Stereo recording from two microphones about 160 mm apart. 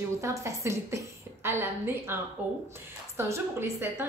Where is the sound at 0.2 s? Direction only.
20° right (ahead or behind).